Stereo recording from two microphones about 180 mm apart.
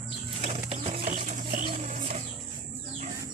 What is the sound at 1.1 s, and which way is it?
Sewing machine, 45° right (ahead or behind).